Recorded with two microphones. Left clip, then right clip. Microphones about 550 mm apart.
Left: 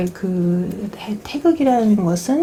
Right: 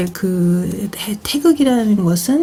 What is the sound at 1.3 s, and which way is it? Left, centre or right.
Speech, right.